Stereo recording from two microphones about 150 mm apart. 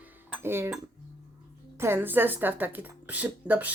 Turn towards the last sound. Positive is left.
turn(degrees=-10)  # may be behind; listen again after turning